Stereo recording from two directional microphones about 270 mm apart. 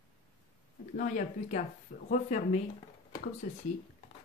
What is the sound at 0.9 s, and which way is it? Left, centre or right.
Speech, left.